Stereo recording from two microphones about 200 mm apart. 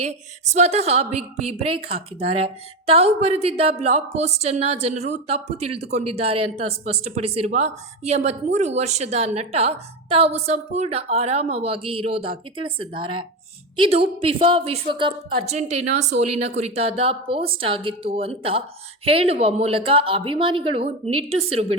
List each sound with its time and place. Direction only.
0.0 s a woman's voice: 35° right (ahead or behind)